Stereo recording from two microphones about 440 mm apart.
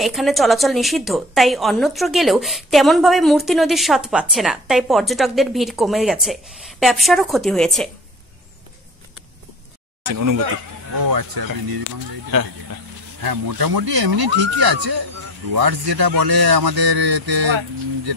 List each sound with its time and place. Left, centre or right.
0.0 s a woman's voice: centre
10.0 s speech: right
13.2 s speech: right